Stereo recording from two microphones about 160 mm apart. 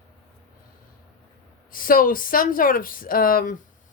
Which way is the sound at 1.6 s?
60° left (ahead or behind).